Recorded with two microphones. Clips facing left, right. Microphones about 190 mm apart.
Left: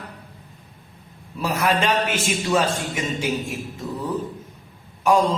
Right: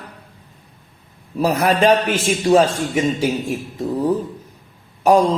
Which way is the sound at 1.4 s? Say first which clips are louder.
Right 6 dB; 40° right (ahead or behind).